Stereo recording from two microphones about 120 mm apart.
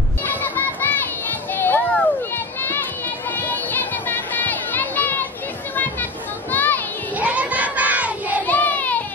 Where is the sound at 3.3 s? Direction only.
15° left (ahead or behind).